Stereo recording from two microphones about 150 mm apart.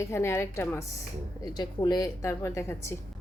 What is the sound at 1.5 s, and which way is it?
A woman's voice, 25° left (ahead or behind).